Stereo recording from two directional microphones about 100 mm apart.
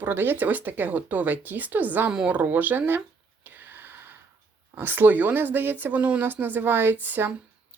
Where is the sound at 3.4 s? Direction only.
20° right (ahead or behind).